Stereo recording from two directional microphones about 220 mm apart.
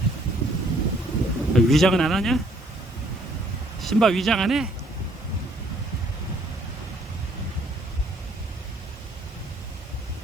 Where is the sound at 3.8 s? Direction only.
Centre (ahead or behind).